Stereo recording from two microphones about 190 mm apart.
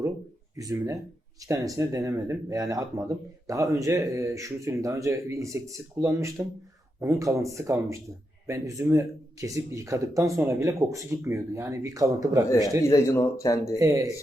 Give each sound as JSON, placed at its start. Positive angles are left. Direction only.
{"t": 1.5, "sound": "speech", "side_deg": -20}
{"t": 12.8, "sound": "speech", "side_deg": 15}
{"t": 13.7, "sound": "speech", "side_deg": -15}